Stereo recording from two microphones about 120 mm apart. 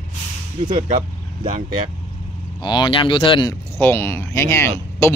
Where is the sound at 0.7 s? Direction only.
90° right.